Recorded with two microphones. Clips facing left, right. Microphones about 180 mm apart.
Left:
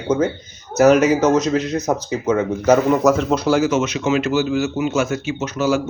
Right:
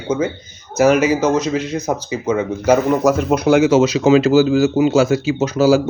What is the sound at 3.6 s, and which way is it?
Speech, 30° right (ahead or behind).